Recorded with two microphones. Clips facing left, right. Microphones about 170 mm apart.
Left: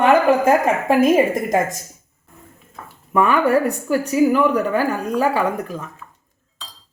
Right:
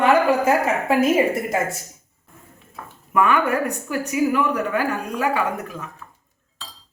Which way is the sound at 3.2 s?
35° left (ahead or behind).